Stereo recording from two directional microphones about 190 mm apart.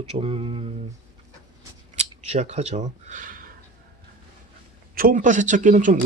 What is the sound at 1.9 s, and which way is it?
Speech, 40° right (ahead or behind).